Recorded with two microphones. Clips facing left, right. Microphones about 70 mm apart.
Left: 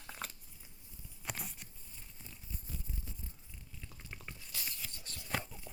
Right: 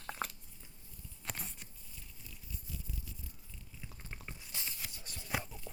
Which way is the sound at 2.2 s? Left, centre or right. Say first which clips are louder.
Left 1 dB; left.